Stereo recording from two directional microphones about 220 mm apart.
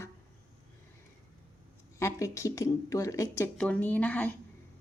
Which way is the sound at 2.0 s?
15° left (ahead or behind).